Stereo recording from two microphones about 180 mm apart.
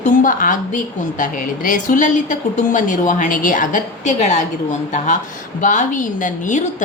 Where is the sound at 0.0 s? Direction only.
45° left (ahead or behind).